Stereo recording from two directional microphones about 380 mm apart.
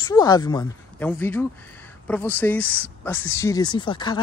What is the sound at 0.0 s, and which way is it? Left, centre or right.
Speech, centre.